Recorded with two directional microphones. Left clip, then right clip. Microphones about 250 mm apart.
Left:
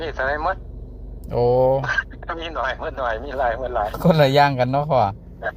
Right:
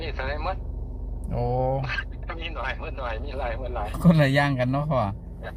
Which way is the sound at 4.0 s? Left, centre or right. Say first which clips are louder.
Left 7 dB; left.